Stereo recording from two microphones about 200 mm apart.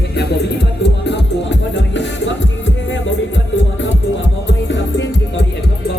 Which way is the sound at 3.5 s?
70° left (ahead or behind).